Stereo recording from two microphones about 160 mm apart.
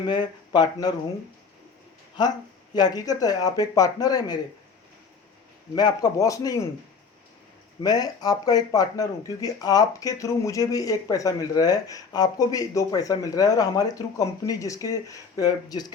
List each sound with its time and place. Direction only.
0.1 s speech: 25° left (ahead or behind)
2.7 s speech: 25° left (ahead or behind)
5.7 s speech: 25° left (ahead or behind)
7.8 s speech: 25° left (ahead or behind)